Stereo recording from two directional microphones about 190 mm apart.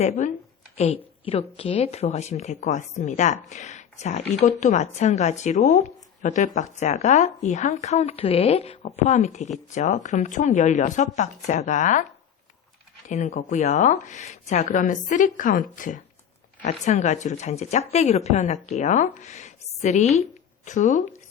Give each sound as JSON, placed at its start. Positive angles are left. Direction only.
{"t": 1.2, "sound": "speech", "side_deg": 30}
{"t": 13.1, "sound": "speech", "side_deg": 35}